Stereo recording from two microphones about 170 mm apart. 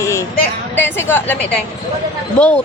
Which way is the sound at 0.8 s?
10° left (ahead or behind).